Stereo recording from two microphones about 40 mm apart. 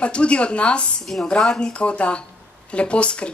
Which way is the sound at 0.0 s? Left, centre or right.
Left.